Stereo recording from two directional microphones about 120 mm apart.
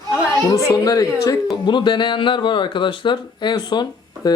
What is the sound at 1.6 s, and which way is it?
Speech, 40° left (ahead or behind).